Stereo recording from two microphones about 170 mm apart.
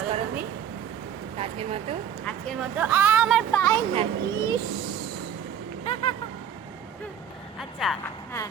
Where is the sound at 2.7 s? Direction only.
10° right (ahead or behind).